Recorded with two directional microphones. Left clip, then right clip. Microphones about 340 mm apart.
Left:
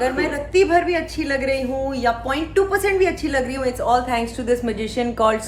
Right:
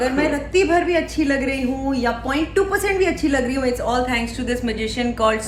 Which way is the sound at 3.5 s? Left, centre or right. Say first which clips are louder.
Left 1 dB; centre.